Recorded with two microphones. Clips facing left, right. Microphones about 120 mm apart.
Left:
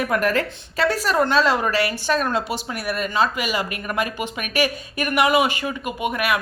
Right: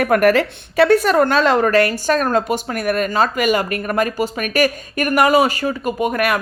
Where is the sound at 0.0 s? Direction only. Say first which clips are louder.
Right 7 dB; 60° right (ahead or behind).